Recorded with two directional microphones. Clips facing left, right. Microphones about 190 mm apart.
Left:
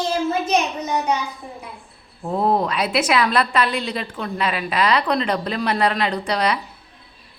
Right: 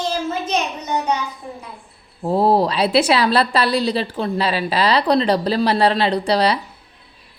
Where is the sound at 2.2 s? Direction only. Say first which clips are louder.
Right 4 dB; 35° right (ahead or behind).